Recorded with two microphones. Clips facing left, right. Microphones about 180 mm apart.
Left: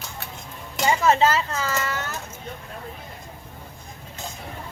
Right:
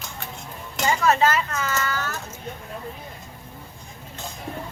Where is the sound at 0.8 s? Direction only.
25° left (ahead or behind).